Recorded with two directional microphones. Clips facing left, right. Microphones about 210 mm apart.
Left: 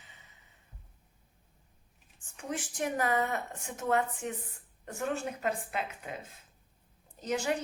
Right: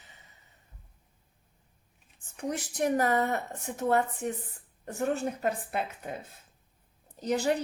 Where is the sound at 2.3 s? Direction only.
40° right (ahead or behind).